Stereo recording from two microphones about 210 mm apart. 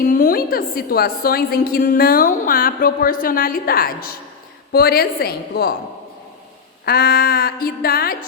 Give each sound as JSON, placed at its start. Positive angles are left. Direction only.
{"t": 0.0, "sound": "a woman's voice", "side_deg": 40}
{"t": 6.8, "sound": "a woman's voice", "side_deg": 45}